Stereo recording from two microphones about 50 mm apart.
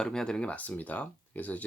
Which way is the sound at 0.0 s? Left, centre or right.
Centre.